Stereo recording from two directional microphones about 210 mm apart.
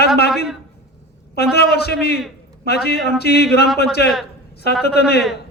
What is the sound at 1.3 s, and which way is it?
A man's voice, 50° left (ahead or behind).